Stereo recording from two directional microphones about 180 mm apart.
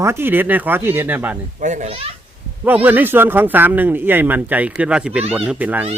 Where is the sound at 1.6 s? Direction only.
40° right (ahead or behind).